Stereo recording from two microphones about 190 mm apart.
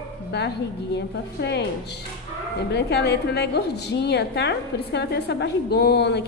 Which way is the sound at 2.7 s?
60° left (ahead or behind).